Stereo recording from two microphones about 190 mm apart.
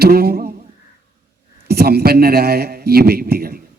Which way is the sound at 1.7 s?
55° right (ahead or behind).